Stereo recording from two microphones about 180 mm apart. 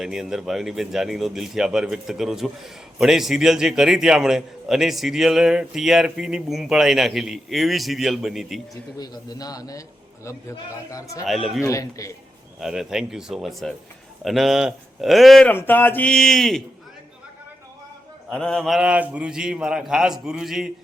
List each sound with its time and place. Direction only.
0.0 s speech: centre (ahead or behind)
9.0 s a man's voice: 20° left (ahead or behind)
10.9 s a man's voice: 20° left (ahead or behind)
11.3 s speech: centre (ahead or behind)
11.6 s speech: 20° left (ahead or behind)
12.5 s speech: centre (ahead or behind)
18.3 s speech: 5° left (ahead or behind)